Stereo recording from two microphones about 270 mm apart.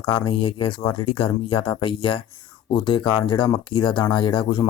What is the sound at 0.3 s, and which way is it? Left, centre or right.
Speech, centre.